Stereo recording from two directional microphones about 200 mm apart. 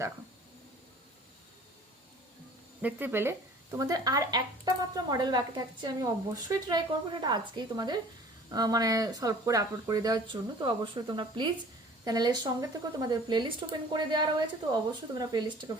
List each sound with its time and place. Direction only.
2.8 s speech: 10° right (ahead or behind)